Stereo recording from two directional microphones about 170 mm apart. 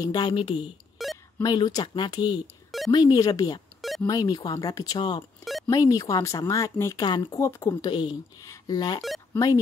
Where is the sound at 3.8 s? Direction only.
Centre (ahead or behind).